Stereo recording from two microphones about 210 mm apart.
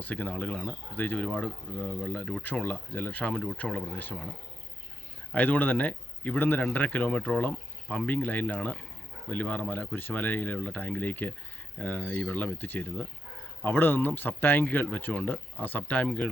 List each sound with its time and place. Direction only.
0.0 s speech: 5° left (ahead or behind)
5.3 s speech: 10° left (ahead or behind)